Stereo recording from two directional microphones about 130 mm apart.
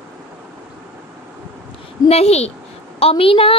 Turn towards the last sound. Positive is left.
turn(degrees=45)  # may be behind; listen again after turning